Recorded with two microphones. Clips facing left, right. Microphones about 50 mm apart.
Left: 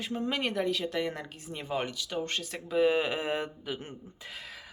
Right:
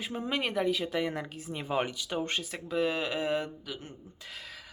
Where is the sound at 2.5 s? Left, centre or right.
Centre.